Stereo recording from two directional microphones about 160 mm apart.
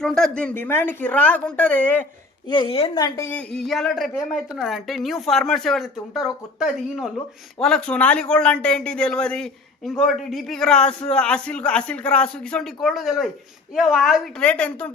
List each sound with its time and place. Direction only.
0.0 s speech: 5° left (ahead or behind)
2.5 s a woman's voice: 30° left (ahead or behind)
3.2 s a man's voice: 5° left (ahead or behind)